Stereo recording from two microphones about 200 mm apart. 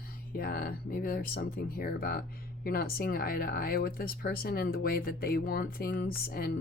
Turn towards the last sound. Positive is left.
turn(degrees=50)  # may be behind; listen again after turning